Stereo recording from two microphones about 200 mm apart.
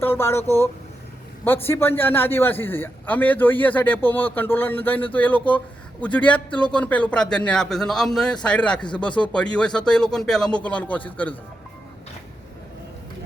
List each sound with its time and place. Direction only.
0.0 s a man's voice: 10° left (ahead or behind)